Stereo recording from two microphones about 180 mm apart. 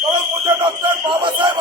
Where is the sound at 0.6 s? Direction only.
25° right (ahead or behind).